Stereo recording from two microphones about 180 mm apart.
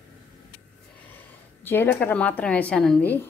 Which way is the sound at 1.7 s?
10° left (ahead or behind).